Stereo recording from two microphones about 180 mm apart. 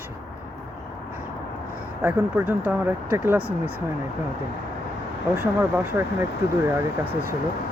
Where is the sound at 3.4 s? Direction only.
55° right (ahead or behind).